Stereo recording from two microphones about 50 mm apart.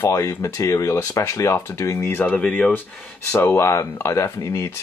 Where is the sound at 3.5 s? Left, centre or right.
Left.